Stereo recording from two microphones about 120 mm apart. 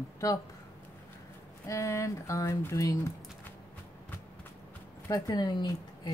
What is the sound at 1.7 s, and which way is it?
Speech, 25° left (ahead or behind).